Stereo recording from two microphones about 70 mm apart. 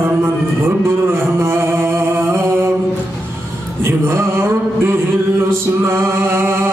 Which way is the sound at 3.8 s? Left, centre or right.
Right.